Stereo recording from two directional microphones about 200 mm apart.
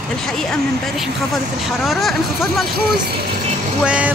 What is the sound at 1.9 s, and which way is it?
Speech, centre (ahead or behind).